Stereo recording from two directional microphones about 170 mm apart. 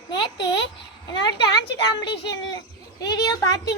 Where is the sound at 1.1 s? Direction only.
25° left (ahead or behind).